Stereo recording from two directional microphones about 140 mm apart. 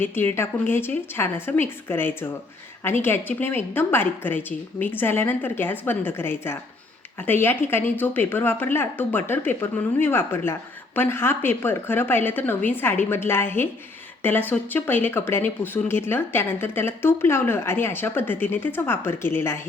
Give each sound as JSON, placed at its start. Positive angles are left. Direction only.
{"t": 0.0, "sound": "speech", "side_deg": 15}